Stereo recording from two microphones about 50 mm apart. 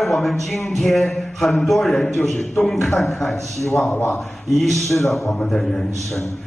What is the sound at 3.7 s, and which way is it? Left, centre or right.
Speech, left.